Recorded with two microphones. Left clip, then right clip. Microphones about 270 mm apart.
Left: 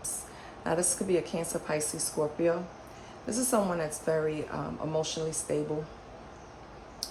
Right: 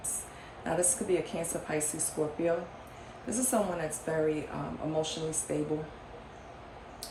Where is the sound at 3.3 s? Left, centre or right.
Centre.